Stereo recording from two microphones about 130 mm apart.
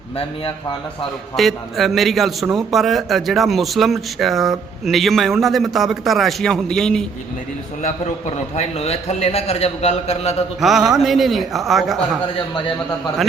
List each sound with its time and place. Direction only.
1.4 s a man's voice: centre (ahead or behind)
8.5 s a man's voice: 55° left (ahead or behind)
10.6 s a man's voice: 5° right (ahead or behind)